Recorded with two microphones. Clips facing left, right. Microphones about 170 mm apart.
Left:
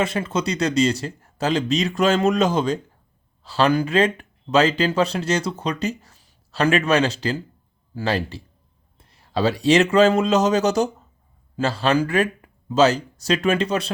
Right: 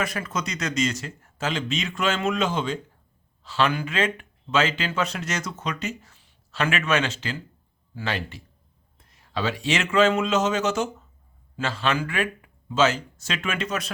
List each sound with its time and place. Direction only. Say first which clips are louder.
0.0 s a man's voice: left 6 dB; 25° left (ahead or behind)